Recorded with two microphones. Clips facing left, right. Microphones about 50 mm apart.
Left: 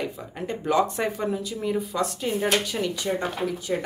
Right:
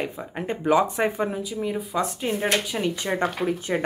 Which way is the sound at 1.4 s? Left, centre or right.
Centre.